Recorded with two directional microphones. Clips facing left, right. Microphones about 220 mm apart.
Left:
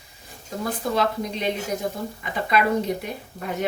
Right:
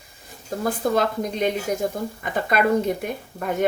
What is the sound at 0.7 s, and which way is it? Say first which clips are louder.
Speech: right 3 dB; 50° right (ahead or behind).